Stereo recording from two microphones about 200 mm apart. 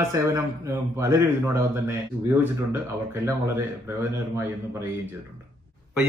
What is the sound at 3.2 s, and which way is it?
Speech, 15° right (ahead or behind).